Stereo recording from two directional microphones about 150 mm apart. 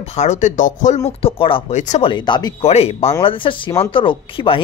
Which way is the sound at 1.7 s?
55° left (ahead or behind).